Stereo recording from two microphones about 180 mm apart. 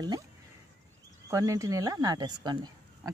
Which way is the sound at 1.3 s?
20° right (ahead or behind).